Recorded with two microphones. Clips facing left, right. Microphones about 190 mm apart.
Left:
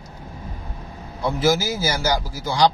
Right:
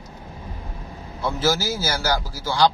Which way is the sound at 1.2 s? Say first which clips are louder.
Left 3 dB; 15° left (ahead or behind).